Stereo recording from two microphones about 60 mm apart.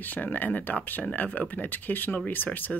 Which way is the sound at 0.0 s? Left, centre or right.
Left.